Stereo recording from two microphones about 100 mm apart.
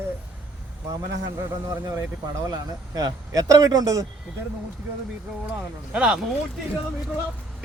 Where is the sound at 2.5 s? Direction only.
40° right (ahead or behind).